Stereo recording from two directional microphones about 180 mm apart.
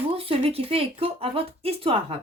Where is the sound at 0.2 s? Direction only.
35° right (ahead or behind).